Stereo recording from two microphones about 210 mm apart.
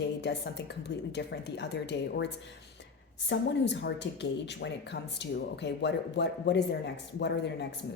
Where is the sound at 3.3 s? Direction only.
55° left (ahead or behind).